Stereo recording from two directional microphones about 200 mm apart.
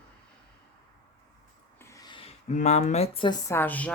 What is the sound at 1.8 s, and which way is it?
Speech, 20° left (ahead or behind).